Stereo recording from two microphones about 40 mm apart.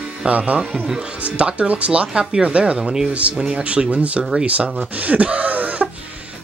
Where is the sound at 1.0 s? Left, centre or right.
Right.